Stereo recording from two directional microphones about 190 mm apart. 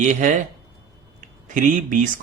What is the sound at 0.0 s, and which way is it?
Speech, 40° right (ahead or behind).